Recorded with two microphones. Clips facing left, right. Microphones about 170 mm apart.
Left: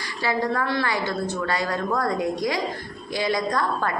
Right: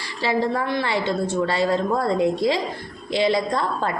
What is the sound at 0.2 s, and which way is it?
A woman's voice, 25° right (ahead or behind).